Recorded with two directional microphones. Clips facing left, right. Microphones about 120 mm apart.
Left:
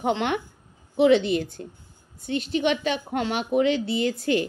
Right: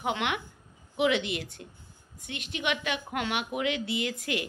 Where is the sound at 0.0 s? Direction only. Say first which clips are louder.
Left 6 dB; 35° left (ahead or behind).